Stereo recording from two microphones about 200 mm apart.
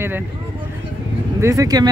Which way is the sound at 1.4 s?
15° right (ahead or behind).